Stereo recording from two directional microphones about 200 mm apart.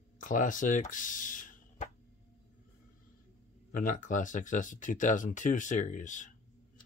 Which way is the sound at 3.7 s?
40° left (ahead or behind).